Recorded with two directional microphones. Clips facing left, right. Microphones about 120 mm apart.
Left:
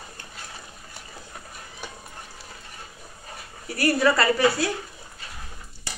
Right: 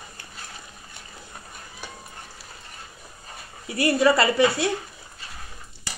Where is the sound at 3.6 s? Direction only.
25° right (ahead or behind).